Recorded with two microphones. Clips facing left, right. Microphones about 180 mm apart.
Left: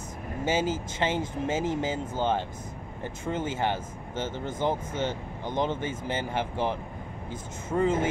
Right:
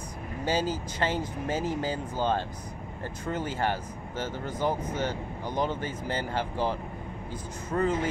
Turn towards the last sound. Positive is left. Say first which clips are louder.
# left 2 dB
turn(degrees=15)  # may be behind; listen again after turning